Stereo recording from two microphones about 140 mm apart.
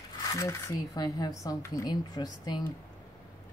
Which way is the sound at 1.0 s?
30° left (ahead or behind).